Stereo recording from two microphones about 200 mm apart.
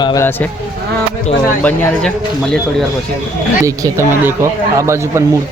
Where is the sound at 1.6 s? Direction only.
5° left (ahead or behind).